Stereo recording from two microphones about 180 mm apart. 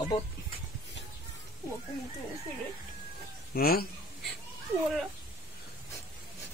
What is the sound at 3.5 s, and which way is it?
Speech, 55° left (ahead or behind).